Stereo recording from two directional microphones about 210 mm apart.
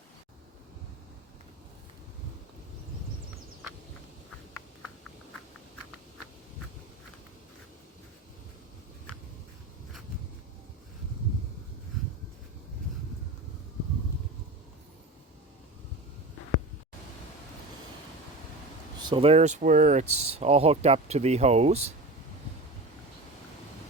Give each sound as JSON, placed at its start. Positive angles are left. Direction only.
{"t": 18.9, "sound": "speech", "side_deg": -20}